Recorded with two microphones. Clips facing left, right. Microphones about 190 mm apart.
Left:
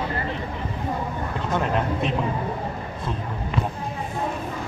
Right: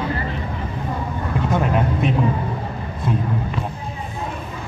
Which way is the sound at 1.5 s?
5° right (ahead or behind).